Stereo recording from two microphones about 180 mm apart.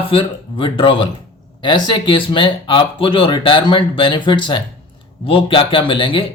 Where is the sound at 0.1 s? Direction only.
30° left (ahead or behind).